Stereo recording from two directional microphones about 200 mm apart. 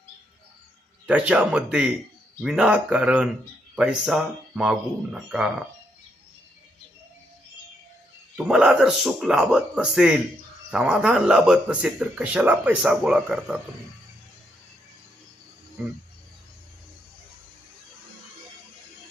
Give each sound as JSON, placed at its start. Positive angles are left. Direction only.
{"t": 1.0, "sound": "speech", "side_deg": -5}
{"t": 8.4, "sound": "speech", "side_deg": -5}